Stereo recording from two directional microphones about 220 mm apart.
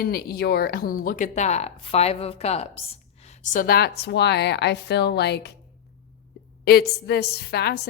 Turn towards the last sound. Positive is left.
turn(degrees=45)  # may be behind; listen again after turning